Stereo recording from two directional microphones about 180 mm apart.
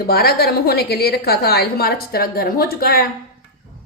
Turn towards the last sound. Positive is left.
turn(degrees=55)  # may be behind; listen again after turning